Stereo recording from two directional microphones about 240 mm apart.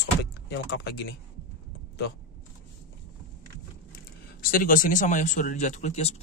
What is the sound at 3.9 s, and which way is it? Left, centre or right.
Speech, left.